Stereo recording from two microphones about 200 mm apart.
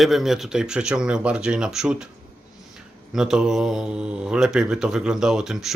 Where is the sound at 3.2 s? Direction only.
Centre (ahead or behind).